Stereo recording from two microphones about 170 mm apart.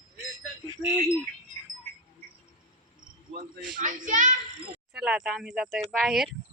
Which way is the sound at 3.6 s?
50° right (ahead or behind).